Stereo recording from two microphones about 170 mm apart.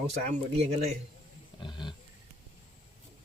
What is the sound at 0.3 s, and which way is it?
Speech, 40° right (ahead or behind).